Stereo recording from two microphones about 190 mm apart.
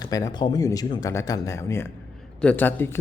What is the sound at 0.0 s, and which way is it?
Speech, 20° left (ahead or behind).